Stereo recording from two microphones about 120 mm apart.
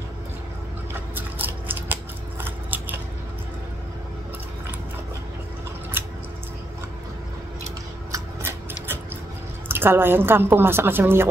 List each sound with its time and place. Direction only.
1.1 s scissors: 15° right (ahead or behind)
8.1 s a sound: 20° right (ahead or behind)
9.7 s a woman's voice: 20° right (ahead or behind)